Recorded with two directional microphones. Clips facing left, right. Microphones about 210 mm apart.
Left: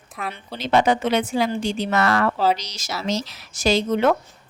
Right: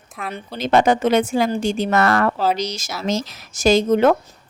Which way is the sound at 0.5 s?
45° right (ahead or behind).